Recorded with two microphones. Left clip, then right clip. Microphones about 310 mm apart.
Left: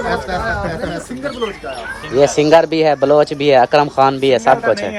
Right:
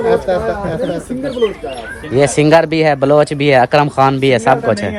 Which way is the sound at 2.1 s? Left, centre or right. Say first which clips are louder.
Even; right.